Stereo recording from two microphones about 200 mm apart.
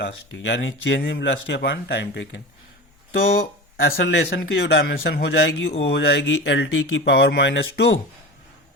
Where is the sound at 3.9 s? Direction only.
55° left (ahead or behind).